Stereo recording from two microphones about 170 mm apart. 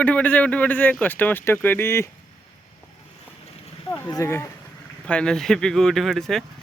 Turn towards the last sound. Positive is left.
turn(degrees=0)  # may be behind; listen again after turning